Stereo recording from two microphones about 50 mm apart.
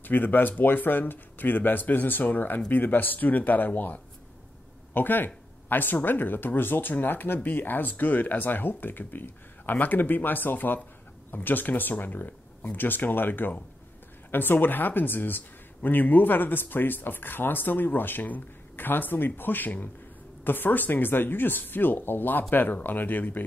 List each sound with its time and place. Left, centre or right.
0.0 s speech: left